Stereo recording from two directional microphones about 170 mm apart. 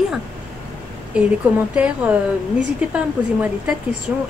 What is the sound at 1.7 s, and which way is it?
Speech, 5° right (ahead or behind).